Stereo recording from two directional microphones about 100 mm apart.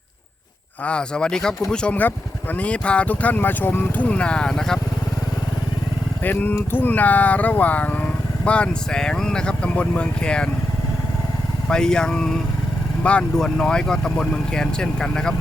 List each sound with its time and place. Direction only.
0.9 s speech: 10° left (ahead or behind)
6.2 s speech: 20° left (ahead or behind)
11.7 s speech: 5° left (ahead or behind)